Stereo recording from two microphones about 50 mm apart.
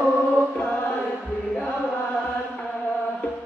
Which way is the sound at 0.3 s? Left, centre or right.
Left.